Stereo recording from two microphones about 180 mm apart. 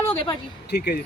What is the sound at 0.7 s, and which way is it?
Speech, 65° left (ahead or behind).